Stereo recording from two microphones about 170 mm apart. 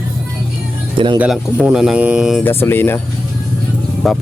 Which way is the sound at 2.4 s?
15° left (ahead or behind).